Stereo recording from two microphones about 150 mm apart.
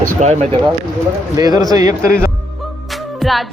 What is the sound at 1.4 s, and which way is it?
Speech, 25° right (ahead or behind).